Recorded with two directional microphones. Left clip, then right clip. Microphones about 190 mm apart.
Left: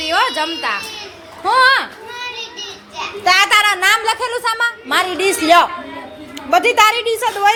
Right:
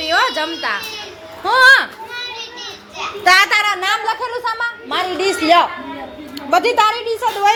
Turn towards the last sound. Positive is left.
turn(degrees=15)  # may be behind; listen again after turning